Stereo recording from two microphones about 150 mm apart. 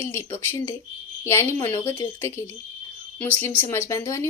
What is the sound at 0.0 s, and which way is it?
A woman's voice, 15° left (ahead or behind).